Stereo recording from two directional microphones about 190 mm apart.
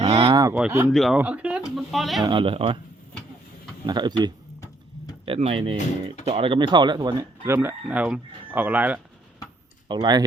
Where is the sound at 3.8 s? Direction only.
25° right (ahead or behind).